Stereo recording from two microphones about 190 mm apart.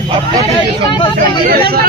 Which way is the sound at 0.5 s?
25° left (ahead or behind).